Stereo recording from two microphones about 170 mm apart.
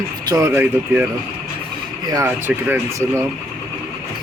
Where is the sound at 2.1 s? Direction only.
15° right (ahead or behind).